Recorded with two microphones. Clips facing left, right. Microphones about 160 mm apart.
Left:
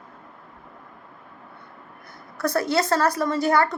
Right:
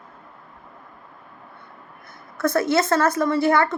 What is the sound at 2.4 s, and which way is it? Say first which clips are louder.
Speech: right 3 dB; 35° left (ahead or behind).